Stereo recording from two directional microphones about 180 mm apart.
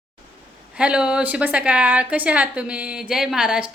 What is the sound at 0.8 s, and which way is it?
A woman's voice, 5° right (ahead or behind).